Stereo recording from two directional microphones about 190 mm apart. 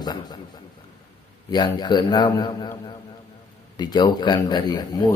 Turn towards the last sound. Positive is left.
turn(degrees=20)  # may be behind; listen again after turning